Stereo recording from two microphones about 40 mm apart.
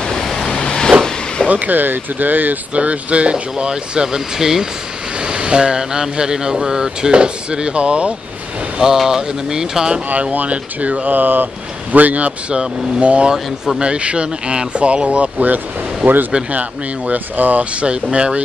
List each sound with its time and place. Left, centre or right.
0.0 s waves: centre
0.3 s waves: centre
0.6 s vehicle: left
1.5 s speech: right
2.7 s speech: right; by 4.6 s centre
5.2 s speech: right
8.7 s speech: centre
10.3 s speech: right